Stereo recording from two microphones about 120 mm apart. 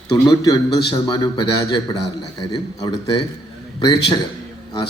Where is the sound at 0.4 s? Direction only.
30° left (ahead or behind).